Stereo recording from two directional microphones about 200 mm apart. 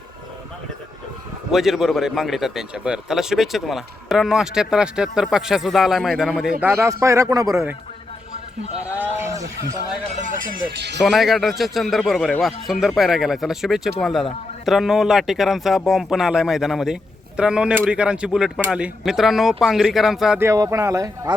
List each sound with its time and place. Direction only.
1.5 s a man's voice: centre (ahead or behind)
9.0 s a sound: 10° right (ahead or behind)
10.1 s speech: 40° right (ahead or behind)
11.0 s a man's voice: centre (ahead or behind)
20.5 s speech: 15° right (ahead or behind)